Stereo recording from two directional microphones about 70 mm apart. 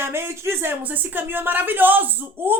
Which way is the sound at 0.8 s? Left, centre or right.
Right.